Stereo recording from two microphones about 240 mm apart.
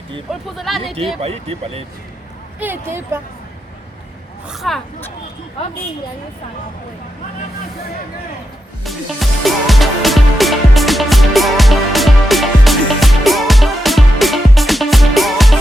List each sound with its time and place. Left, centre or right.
0.3 s speech: centre
1.2 s speech: right
2.6 s speech: centre
4.4 s speech: centre
8.8 s music: centre